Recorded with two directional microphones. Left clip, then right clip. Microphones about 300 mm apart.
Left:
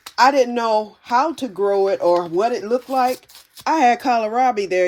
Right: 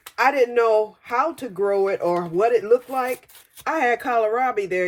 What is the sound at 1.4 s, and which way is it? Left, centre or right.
Speech, centre.